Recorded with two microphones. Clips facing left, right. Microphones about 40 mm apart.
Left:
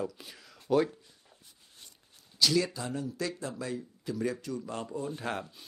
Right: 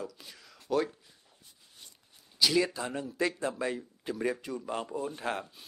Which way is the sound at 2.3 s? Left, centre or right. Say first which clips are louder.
Right 1 dB; centre.